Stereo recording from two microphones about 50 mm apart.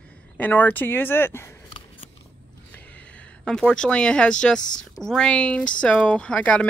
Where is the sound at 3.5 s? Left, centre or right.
Centre.